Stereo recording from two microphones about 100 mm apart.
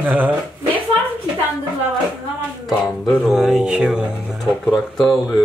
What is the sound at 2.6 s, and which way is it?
Speech, 5° left (ahead or behind).